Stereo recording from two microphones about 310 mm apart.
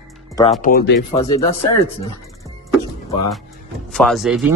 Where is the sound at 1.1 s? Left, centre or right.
Centre.